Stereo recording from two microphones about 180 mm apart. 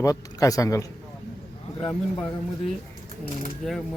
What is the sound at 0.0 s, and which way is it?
Speech, 20° left (ahead or behind).